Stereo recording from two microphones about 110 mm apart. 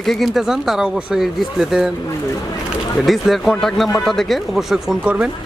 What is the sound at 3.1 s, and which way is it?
Speech, centre (ahead or behind).